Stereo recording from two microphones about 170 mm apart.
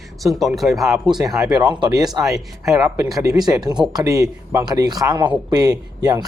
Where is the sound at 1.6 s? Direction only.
25° right (ahead or behind).